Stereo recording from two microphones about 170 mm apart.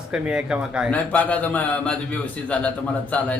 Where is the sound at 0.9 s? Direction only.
10° left (ahead or behind).